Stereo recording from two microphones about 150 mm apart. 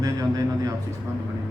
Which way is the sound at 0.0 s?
25° right (ahead or behind).